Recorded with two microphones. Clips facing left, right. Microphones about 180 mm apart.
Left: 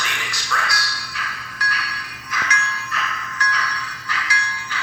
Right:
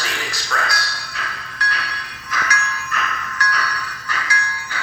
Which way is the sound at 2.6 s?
70° right (ahead or behind).